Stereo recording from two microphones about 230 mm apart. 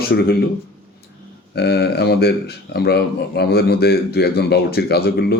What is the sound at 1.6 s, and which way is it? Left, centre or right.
Speech, left.